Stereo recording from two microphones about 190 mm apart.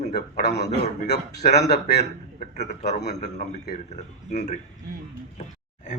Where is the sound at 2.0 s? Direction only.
35° left (ahead or behind).